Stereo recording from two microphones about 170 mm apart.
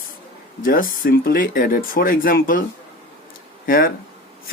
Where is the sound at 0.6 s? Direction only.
55° left (ahead or behind).